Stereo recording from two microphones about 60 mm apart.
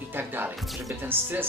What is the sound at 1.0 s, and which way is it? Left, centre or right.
Speech, right.